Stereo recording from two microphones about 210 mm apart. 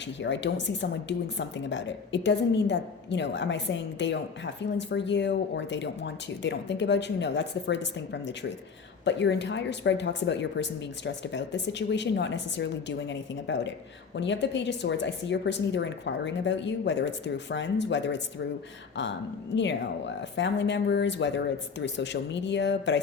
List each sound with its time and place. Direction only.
0.2 s speech: 60° left (ahead or behind)
20.3 s speech: 55° left (ahead or behind)